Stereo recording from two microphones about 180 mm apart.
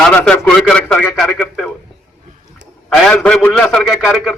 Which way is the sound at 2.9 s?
5° left (ahead or behind).